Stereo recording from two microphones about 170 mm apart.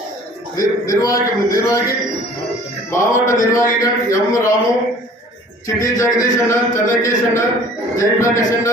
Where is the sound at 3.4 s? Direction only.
20° left (ahead or behind).